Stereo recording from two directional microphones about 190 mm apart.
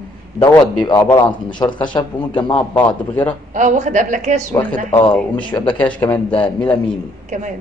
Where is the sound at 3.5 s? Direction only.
40° right (ahead or behind).